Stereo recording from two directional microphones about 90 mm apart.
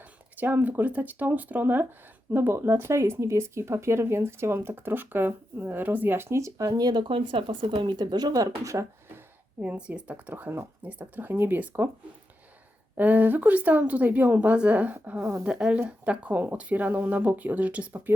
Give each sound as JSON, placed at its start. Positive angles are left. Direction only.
{"t": 0.0, "sound": "speech", "side_deg": -20}
{"t": 9.6, "sound": "speech", "side_deg": -15}
{"t": 13.0, "sound": "speech", "side_deg": -20}
{"t": 15.2, "sound": "speech", "side_deg": -30}
{"t": 15.4, "sound": "speech", "side_deg": -10}